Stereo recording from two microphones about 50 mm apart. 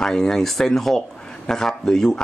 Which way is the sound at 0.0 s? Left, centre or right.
Centre.